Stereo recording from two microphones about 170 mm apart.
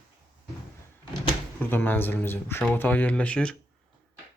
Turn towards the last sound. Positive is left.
turn(degrees=5)  # may be behind; listen again after turning